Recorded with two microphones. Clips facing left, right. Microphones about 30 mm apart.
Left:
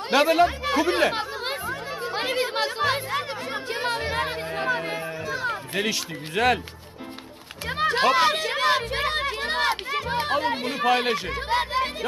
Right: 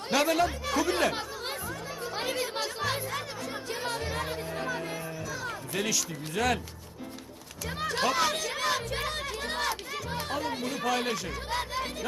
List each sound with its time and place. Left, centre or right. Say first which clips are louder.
0.1 s chatter: left 7 dB; left
7.7 s speech: left 8 dB; left